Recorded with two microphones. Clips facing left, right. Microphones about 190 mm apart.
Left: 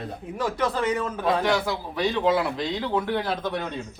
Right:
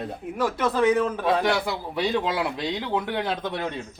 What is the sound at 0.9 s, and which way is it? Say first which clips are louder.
A man's voice: right 3 dB; 10° right (ahead or behind).